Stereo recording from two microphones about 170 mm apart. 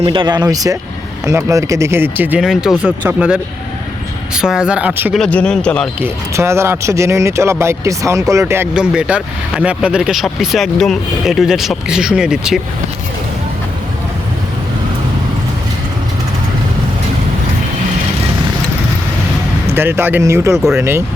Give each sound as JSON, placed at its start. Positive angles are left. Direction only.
{"t": 0.0, "sound": "speech", "side_deg": -30}
{"t": 5.1, "sound": "speech", "side_deg": 5}
{"t": 6.0, "sound": "speech", "side_deg": -15}
{"t": 19.7, "sound": "speech", "side_deg": -15}